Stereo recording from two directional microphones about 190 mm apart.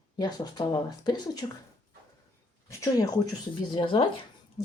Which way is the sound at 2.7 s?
15° left (ahead or behind).